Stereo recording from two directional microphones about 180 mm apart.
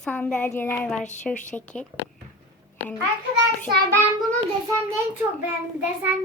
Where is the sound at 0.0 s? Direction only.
5° left (ahead or behind).